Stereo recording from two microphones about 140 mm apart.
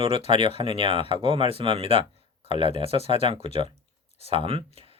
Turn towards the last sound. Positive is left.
turn(degrees=-45)  # may be behind; listen again after turning